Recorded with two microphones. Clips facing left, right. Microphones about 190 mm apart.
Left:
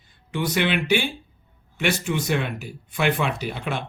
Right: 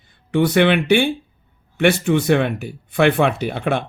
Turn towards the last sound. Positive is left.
turn(degrees=-55)  # may be behind; listen again after turning